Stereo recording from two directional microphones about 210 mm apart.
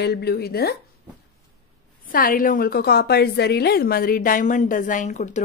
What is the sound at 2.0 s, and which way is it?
A woman's voice, 40° left (ahead or behind).